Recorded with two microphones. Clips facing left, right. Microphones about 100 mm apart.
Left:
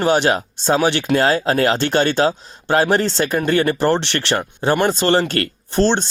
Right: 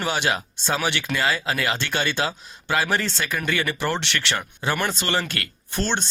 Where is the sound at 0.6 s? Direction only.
35° left (ahead or behind).